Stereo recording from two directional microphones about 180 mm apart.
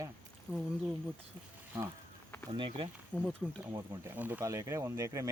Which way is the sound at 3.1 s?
10° right (ahead or behind).